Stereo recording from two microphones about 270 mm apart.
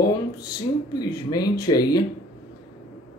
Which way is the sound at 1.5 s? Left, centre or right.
Centre.